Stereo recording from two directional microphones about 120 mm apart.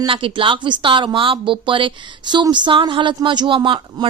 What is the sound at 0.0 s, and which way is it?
Speech, 45° right (ahead or behind).